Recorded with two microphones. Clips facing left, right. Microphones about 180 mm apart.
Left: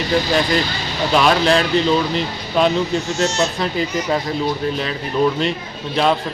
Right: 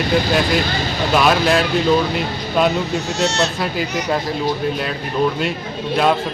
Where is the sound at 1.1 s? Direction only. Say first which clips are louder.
Even; 5° right (ahead or behind).